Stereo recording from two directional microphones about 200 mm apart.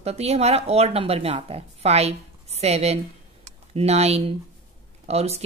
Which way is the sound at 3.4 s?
30° right (ahead or behind).